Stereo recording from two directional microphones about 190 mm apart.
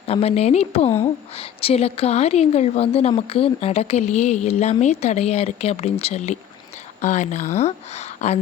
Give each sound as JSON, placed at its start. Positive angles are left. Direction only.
{"t": 0.1, "sound": "a woman's voice", "side_deg": 30}